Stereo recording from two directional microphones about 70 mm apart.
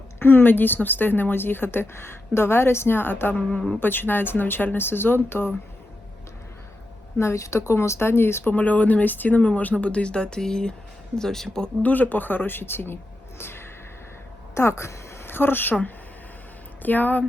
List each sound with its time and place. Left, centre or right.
0.2 s speech: left
7.2 s speech: left
8.5 s speech: left
11.8 s speech: left
13.4 s a sound: left
14.5 s a woman's voice: left